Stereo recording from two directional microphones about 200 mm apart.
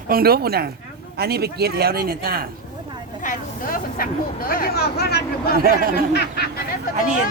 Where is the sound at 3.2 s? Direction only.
45° left (ahead or behind).